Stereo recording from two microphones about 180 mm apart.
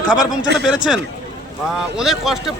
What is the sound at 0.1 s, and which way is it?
Speech, 5° right (ahead or behind).